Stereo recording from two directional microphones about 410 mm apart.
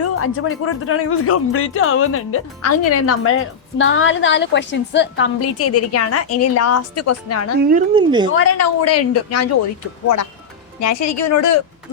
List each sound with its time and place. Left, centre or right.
0.0 s speech: left
7.7 s speech: centre
8.3 s speech: left
10.8 s speech: left